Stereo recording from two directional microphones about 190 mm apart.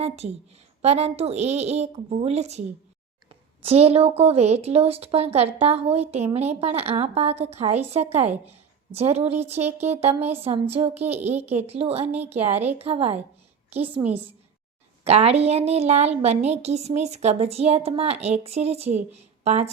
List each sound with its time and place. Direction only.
0.8 s a woman's voice: 35° right (ahead or behind)
9.4 s a woman's voice: 35° right (ahead or behind)
11.2 s speech: 10° right (ahead or behind)
11.6 s a woman's voice: 30° right (ahead or behind)
14.0 s speech: 10° right (ahead or behind)
15.0 s a woman's voice: 35° right (ahead or behind)